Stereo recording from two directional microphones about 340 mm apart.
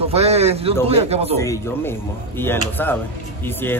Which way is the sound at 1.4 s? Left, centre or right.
Centre.